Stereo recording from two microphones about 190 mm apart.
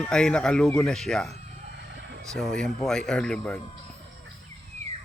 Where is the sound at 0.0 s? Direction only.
5° left (ahead or behind).